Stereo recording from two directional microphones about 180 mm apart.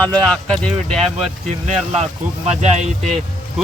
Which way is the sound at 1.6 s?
35° right (ahead or behind).